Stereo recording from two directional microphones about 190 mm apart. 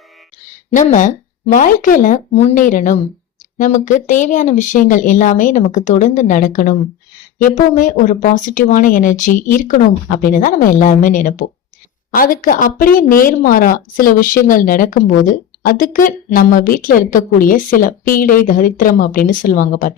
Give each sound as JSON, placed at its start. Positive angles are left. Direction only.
{"t": 0.7, "sound": "a woman's voice", "side_deg": 40}